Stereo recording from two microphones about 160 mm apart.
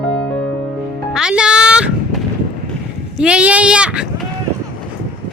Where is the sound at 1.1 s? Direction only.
5° right (ahead or behind).